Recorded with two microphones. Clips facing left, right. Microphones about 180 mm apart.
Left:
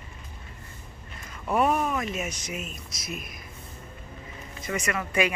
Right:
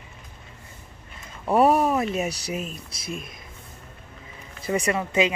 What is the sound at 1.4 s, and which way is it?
Speech, 35° right (ahead or behind).